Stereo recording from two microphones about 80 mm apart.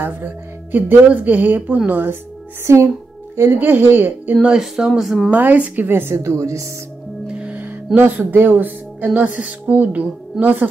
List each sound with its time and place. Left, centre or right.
0.0 s speech: right
2.6 s speech: right; by 5.3 s centre
5.3 s speech: right
7.3 s music: centre
7.6 s speech: right